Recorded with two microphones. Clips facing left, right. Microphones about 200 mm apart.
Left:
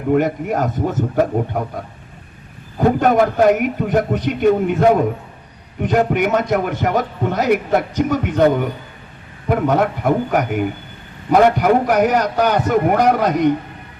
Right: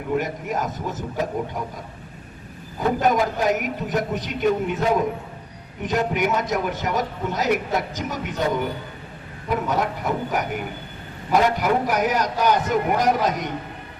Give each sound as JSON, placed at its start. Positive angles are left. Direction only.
{"t": 0.1, "sound": "a man's voice", "side_deg": 55}